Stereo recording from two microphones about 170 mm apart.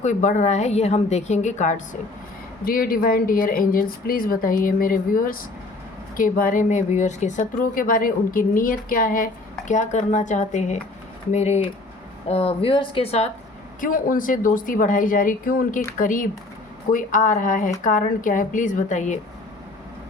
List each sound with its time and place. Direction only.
0.0 s speech: 45° left (ahead or behind)
2.6 s speech: 60° left (ahead or behind); by 13.3 s 40° left (ahead or behind)
13.8 s speech: 55° left (ahead or behind)